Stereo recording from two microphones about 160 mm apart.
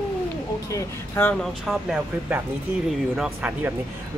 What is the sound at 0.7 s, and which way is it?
Speech, 15° left (ahead or behind).